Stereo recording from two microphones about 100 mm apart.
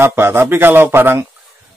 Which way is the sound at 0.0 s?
25° right (ahead or behind).